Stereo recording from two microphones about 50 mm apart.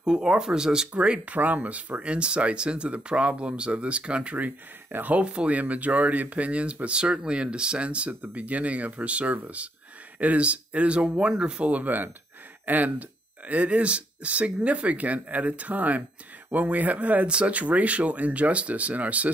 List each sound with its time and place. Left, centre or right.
0.0 s speech: centre
1.4 s speech: right
11.7 s speech: right